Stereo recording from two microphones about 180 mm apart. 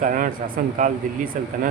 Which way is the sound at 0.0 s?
50° right (ahead or behind).